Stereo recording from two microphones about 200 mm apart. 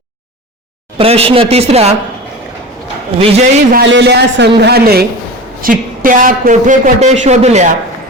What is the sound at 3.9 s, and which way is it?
A man's voice, 60° right (ahead or behind).